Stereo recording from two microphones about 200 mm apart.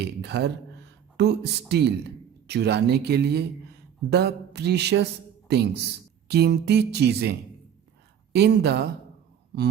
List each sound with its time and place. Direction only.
0.0 s speech: 55° right (ahead or behind)